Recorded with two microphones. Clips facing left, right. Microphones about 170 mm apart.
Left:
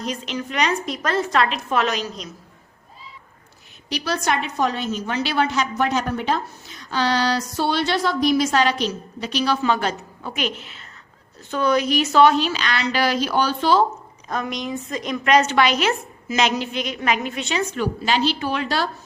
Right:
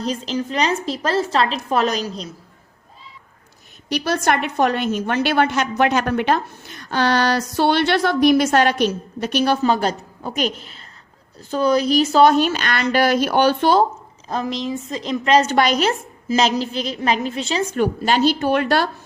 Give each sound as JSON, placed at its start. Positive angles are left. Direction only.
{"t": 0.0, "sound": "a woman's voice", "side_deg": -30}
{"t": 3.8, "sound": "a woman's voice", "side_deg": -50}
{"t": 14.3, "sound": "a woman's voice", "side_deg": -30}
{"t": 15.4, "sound": "a woman's voice", "side_deg": -40}
{"t": 17.7, "sound": "speech", "side_deg": -50}